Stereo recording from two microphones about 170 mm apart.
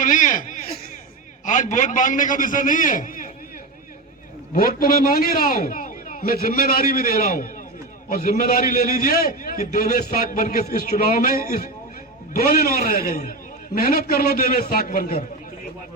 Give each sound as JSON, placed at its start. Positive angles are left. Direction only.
{"t": 0.0, "sound": "a man's voice", "side_deg": 50}
{"t": 1.5, "sound": "a man's voice", "side_deg": 50}
{"t": 4.5, "sound": "a man's voice", "side_deg": 60}
{"t": 12.9, "sound": "a man's voice", "side_deg": 55}